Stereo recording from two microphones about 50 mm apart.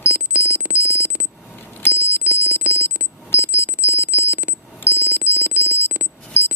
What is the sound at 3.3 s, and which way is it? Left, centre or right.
Alarm, right.